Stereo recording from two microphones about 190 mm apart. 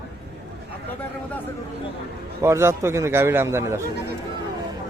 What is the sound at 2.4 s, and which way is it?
A man's voice, 15° right (ahead or behind).